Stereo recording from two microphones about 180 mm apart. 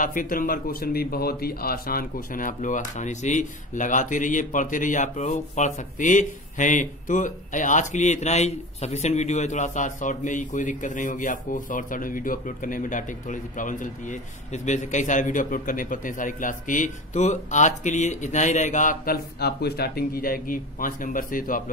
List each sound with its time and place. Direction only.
0.0 s speech: 50° left (ahead or behind)